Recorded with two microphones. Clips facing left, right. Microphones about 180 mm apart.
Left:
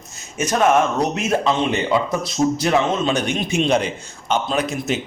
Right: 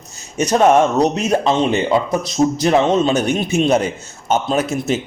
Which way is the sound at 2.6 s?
40° right (ahead or behind).